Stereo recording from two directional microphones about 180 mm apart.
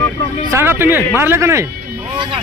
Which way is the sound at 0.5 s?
10° right (ahead or behind).